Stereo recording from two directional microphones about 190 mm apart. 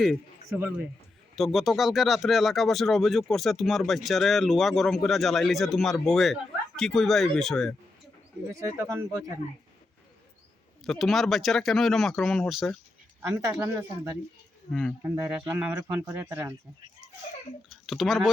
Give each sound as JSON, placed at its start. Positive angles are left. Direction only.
{"t": 0.5, "sound": "speech", "side_deg": -10}
{"t": 8.4, "sound": "speech", "side_deg": -15}
{"t": 10.8, "sound": "speech", "side_deg": 0}
{"t": 13.2, "sound": "speech", "side_deg": -15}
{"t": 14.7, "sound": "speech", "side_deg": 5}
{"t": 15.0, "sound": "speech", "side_deg": -15}
{"t": 17.8, "sound": "speech", "side_deg": 0}